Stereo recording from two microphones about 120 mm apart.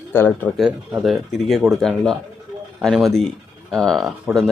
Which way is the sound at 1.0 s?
Centre (ahead or behind).